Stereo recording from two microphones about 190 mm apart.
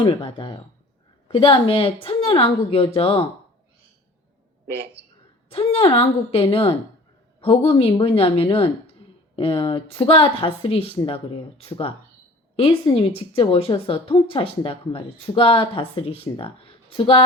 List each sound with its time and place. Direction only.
0.0 s speech: 25° left (ahead or behind)
5.5 s speech: 30° left (ahead or behind)